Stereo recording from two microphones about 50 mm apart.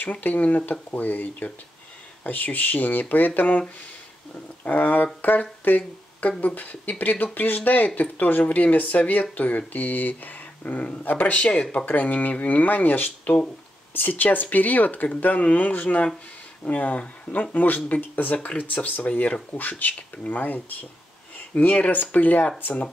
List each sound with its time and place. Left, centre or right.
0.1 s speech: left